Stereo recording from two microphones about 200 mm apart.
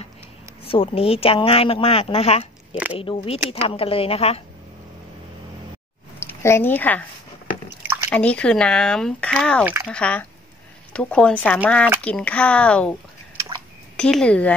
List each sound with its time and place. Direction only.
0.7 s speech: 30° left (ahead or behind)
6.1 s speech: 15° left (ahead or behind)
8.1 s speech: 5° left (ahead or behind)
13.9 s speech: 5° left (ahead or behind)